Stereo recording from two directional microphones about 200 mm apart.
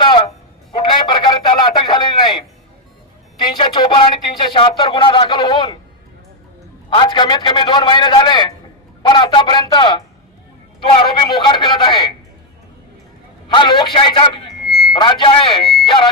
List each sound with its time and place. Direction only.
0.0 s a sound: 25° left (ahead or behind)
3.5 s a man's voice: 25° left (ahead or behind)
6.9 s a man's voice: 25° left (ahead or behind)
13.5 s a man's voice: 25° left (ahead or behind)